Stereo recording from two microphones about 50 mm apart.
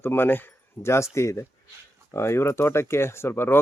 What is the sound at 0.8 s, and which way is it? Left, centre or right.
Speech, left.